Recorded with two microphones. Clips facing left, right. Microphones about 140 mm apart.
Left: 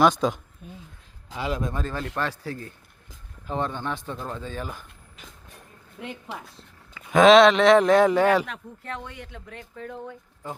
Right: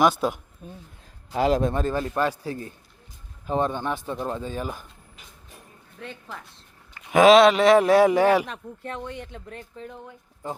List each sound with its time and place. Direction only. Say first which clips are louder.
0.0 s a man's voice: left 1 dB; 10° right (ahead or behind)
0.6 s speech: right 2 dB; 40° right (ahead or behind)
1.7 s a man's voice: right 5 dB; 15° right (ahead or behind)
6.0 s speech: left 2 dB; 15° left (ahead or behind)
7.1 s a man's voice: even; 5° right (ahead or behind)
8.4 s speech: right 1 dB; 25° right (ahead or behind)
9.7 s speech: left 3 dB; 20° right (ahead or behind)